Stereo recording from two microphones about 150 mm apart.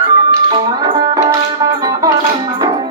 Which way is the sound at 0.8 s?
25° right (ahead or behind).